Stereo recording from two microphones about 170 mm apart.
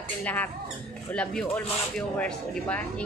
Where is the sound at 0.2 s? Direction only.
10° left (ahead or behind).